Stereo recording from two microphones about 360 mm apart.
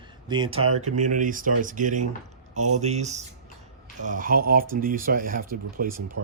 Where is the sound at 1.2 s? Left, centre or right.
Right.